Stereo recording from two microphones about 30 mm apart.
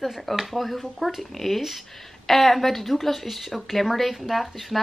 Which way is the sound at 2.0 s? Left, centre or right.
Centre.